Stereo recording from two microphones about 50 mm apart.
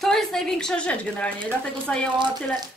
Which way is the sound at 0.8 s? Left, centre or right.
Left.